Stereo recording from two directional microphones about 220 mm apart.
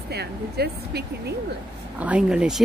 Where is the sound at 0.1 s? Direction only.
45° right (ahead or behind).